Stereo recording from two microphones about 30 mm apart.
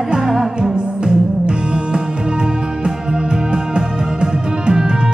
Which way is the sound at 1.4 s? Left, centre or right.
Right.